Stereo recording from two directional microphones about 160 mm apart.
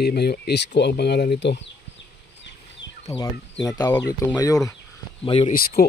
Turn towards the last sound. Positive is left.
turn(degrees=70)  # may be behind; listen again after turning